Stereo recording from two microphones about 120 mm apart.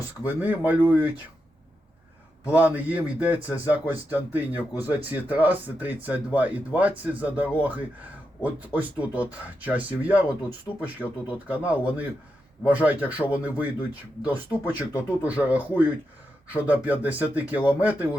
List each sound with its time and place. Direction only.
0.3 s speech: 15° right (ahead or behind)
2.5 s speech: 15° right (ahead or behind)
14.6 s speech: 25° left (ahead or behind)
15.3 s speech: 10° right (ahead or behind)